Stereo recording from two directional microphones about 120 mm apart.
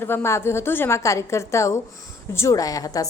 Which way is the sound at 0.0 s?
20° left (ahead or behind).